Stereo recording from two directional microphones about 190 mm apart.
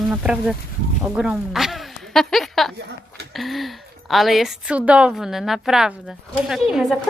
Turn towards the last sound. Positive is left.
turn(degrees=0)  # may be behind; listen again after turning